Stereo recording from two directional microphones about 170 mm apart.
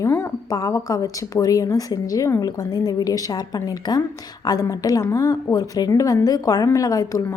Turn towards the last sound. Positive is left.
turn(degrees=20)  # may be behind; listen again after turning